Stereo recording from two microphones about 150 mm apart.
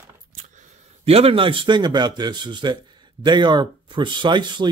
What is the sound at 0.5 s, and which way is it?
A man's voice, 40° right (ahead or behind).